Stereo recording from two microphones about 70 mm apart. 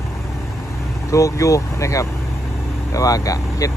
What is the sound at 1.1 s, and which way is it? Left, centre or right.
Speech, left.